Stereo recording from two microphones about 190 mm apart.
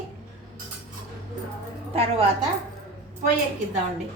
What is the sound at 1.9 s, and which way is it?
Speech, 30° right (ahead or behind).